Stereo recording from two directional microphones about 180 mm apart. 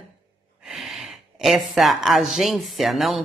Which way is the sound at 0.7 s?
Centre (ahead or behind).